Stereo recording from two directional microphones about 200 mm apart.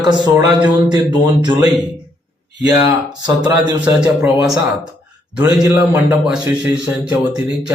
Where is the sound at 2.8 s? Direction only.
20° right (ahead or behind).